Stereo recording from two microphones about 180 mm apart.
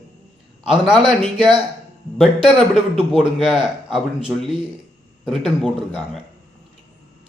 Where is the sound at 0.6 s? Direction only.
5° right (ahead or behind).